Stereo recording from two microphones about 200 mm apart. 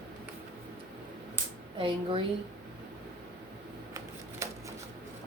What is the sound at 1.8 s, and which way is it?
Speech, 25° right (ahead or behind).